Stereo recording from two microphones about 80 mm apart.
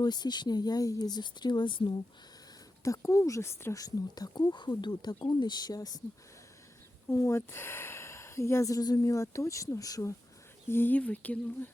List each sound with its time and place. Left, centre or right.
0.0 s speech: left
2.8 s speech: left
3.8 s speech: left
7.1 s speech: left
10.7 s speech: left